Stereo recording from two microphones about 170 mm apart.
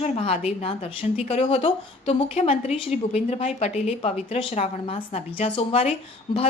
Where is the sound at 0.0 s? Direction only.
40° left (ahead or behind).